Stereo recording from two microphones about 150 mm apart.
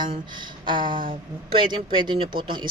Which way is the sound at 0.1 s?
30° right (ahead or behind).